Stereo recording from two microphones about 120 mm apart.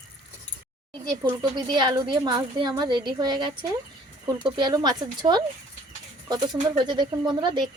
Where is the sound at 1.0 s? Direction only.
35° right (ahead or behind).